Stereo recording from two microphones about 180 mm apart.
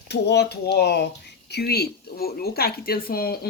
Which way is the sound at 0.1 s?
70° left (ahead or behind).